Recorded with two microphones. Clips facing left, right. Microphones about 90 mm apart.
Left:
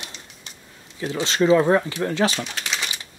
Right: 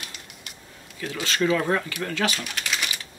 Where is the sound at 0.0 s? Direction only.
25° left (ahead or behind).